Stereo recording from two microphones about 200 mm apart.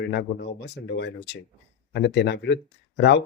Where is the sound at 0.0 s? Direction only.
55° left (ahead or behind).